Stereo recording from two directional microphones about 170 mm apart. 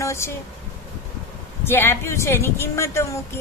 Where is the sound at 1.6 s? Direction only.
15° left (ahead or behind).